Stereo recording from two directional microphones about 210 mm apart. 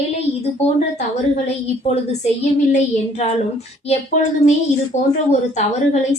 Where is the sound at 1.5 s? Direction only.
30° left (ahead or behind).